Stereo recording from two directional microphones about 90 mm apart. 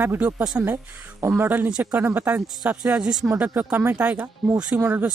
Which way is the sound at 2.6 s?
5° right (ahead or behind).